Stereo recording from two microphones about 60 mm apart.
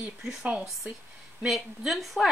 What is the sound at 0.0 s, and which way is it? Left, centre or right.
Speech, centre.